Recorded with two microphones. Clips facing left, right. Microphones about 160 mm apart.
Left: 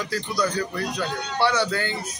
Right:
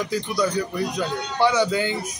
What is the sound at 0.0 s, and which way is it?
A man's voice, 15° right (ahead or behind).